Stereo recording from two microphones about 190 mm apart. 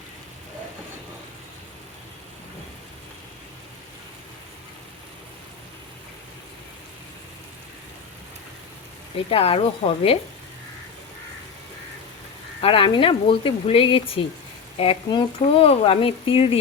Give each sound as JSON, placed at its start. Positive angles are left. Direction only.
{"t": 9.1, "sound": "speech", "side_deg": 30}
{"t": 12.6, "sound": "speech", "side_deg": 30}